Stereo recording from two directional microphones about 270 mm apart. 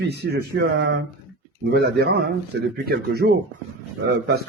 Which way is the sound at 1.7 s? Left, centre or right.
Right.